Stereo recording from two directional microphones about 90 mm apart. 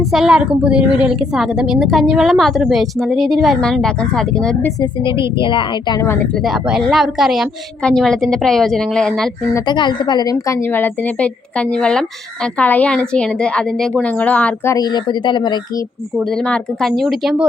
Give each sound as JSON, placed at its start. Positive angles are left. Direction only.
{"t": 0.1, "sound": "a woman's voice", "side_deg": -5}
{"t": 5.4, "sound": "speech", "side_deg": 65}
{"t": 6.3, "sound": "a woman's voice", "side_deg": -5}
{"t": 9.6, "sound": "speech", "side_deg": 55}
{"t": 10.3, "sound": "a woman's voice", "side_deg": 35}
{"t": 10.7, "sound": "speech", "side_deg": 20}
{"t": 14.8, "sound": "speech", "side_deg": 50}
{"t": 16.3, "sound": "a woman's voice", "side_deg": 5}